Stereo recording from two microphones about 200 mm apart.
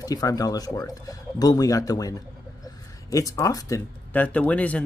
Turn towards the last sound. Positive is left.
turn(degrees=5)  # may be behind; listen again after turning